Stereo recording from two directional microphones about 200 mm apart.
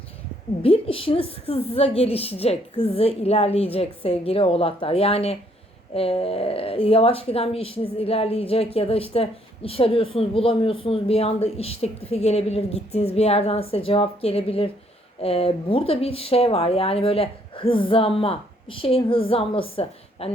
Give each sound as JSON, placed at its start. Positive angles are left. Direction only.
{"t": 0.6, "sound": "speech", "side_deg": 30}